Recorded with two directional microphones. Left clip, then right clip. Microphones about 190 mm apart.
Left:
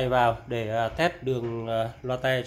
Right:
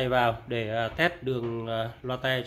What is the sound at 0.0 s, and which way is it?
Speech, 5° right (ahead or behind).